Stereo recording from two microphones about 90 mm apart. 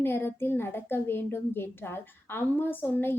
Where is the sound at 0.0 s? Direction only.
25° left (ahead or behind).